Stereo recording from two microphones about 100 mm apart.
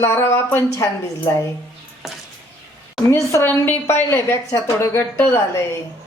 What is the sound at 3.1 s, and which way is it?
A woman's voice, 25° left (ahead or behind).